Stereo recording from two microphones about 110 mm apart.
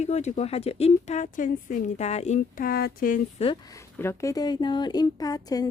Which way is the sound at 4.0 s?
25° left (ahead or behind).